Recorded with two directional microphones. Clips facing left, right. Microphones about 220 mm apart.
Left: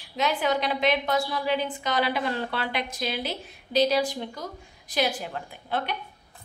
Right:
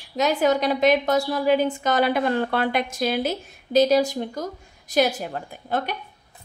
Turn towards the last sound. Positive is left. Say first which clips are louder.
# right 4 dB
turn(degrees=-45)  # may be behind; listen again after turning